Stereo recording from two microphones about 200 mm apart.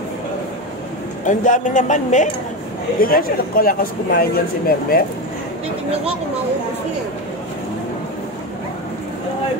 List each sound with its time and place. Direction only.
1.2 s speech: 40° left (ahead or behind)